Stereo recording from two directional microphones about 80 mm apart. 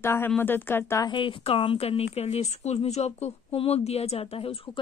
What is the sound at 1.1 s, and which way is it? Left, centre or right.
Speech, left.